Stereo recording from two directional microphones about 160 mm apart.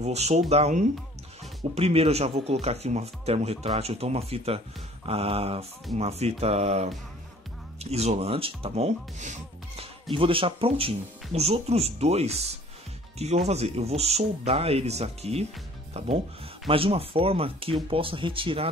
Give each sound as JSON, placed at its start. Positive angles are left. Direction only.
{"t": 0.0, "sound": "speech", "side_deg": -40}
{"t": 10.1, "sound": "speech", "side_deg": -35}
{"t": 16.6, "sound": "speech", "side_deg": -35}